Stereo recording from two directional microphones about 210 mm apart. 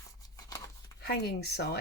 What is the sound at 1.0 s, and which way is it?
Speech, 50° left (ahead or behind).